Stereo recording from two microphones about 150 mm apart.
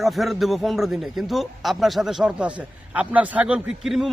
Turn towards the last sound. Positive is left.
turn(degrees=0)  # may be behind; listen again after turning